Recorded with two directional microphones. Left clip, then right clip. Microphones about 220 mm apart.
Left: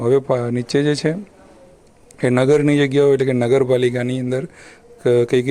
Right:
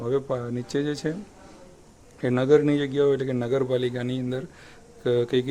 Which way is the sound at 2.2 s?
30° left (ahead or behind).